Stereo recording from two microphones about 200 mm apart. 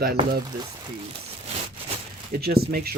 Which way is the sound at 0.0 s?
50° right (ahead or behind).